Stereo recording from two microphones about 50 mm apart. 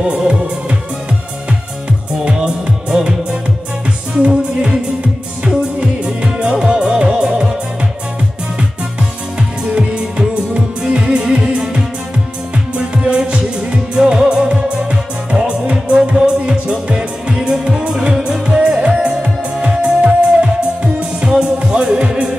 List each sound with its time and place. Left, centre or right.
0.0 s music: right
2.2 s music: centre
4.2 s music: centre
9.7 s music: right